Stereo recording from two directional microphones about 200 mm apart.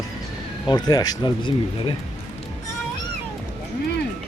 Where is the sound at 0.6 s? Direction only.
20° left (ahead or behind).